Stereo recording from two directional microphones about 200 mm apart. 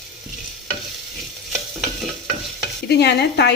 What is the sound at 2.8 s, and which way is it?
Stir, 55° left (ahead or behind).